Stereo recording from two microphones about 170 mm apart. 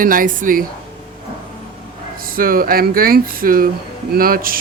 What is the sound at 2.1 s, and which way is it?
Speech, 55° right (ahead or behind).